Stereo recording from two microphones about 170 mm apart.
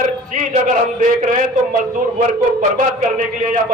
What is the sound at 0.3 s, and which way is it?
A man's voice, 50° right (ahead or behind).